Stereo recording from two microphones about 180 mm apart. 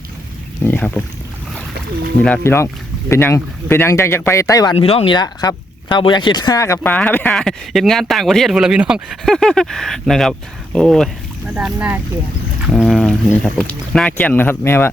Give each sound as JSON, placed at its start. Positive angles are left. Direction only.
{"t": 0.6, "sound": "speech", "side_deg": 10}
{"t": 2.2, "sound": "speech", "side_deg": 10}
{"t": 11.5, "sound": "speech", "side_deg": -10}